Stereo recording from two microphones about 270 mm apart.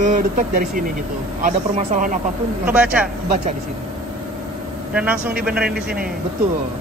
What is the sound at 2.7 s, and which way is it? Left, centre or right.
Speech, centre.